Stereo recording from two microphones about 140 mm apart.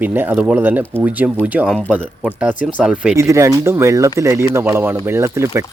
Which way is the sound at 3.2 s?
20° right (ahead or behind).